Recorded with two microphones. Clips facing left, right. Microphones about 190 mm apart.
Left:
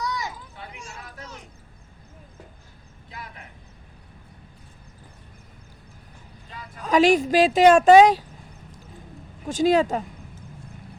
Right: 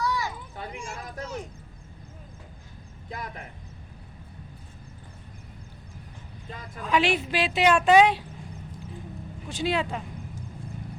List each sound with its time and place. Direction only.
0.0 s a sound: 15° left (ahead or behind)
3.1 s speech: 45° right (ahead or behind)
6.8 s a woman's voice: 45° left (ahead or behind)
9.5 s a woman's voice: 45° left (ahead or behind)